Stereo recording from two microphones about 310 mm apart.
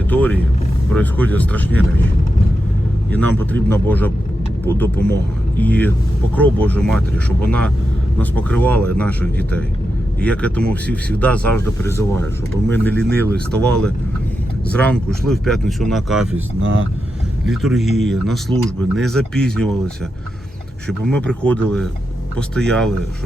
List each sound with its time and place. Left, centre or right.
0.1 s music: centre
0.9 s speech: centre
3.1 s speech: centre
16.6 s speech: right
17.4 s speech: centre
20.8 s speech: centre